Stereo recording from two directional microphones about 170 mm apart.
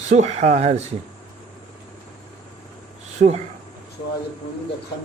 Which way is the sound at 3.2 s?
45° right (ahead or behind).